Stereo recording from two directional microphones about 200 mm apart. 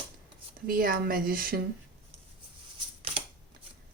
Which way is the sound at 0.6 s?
45° right (ahead or behind).